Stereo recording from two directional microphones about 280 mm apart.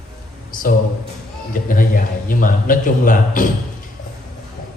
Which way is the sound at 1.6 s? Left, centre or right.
Left.